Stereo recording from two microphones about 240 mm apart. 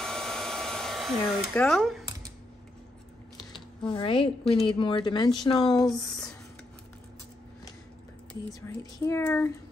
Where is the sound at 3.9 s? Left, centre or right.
Left.